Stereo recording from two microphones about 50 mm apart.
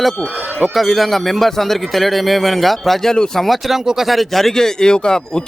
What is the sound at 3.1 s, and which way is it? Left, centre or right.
Speech, centre.